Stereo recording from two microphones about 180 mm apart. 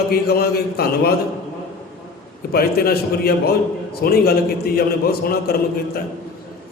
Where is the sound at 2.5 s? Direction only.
60° left (ahead or behind).